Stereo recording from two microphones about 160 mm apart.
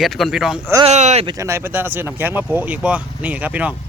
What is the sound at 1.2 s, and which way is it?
Speech, 20° right (ahead or behind).